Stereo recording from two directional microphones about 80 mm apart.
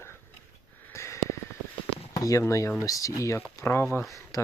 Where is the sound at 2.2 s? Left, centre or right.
Left.